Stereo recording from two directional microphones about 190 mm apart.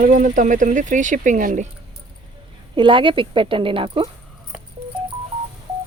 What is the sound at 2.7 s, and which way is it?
A woman's voice, 25° right (ahead or behind).